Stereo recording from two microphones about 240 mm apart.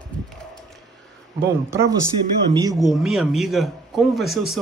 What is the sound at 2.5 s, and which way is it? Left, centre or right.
Speech, centre.